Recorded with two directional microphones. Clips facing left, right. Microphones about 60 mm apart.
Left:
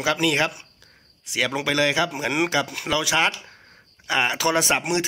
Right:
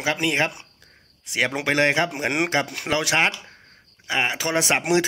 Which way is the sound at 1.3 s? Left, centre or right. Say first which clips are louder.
Right 1 dB; right.